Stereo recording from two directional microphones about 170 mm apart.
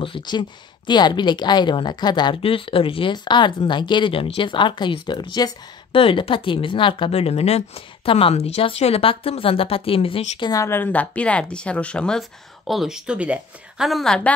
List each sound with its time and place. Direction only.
0.0 s speech: 30° left (ahead or behind)
10.5 s speech: 15° left (ahead or behind)